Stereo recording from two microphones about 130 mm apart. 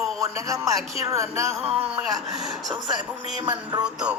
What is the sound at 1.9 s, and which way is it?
Speech, centre (ahead or behind).